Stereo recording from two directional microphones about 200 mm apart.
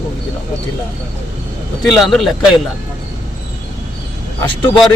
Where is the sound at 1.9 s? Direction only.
Centre (ahead or behind).